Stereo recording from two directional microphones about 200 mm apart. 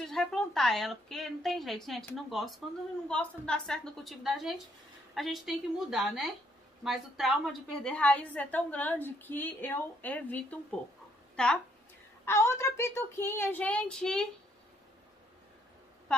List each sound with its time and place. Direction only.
0.0 s a woman's voice: centre (ahead or behind)